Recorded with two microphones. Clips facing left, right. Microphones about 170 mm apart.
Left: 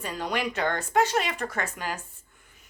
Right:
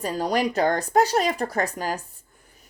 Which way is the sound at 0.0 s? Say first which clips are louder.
Right 6 dB; 35° right (ahead or behind).